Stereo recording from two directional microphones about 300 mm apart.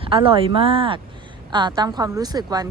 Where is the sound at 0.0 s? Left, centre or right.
Centre.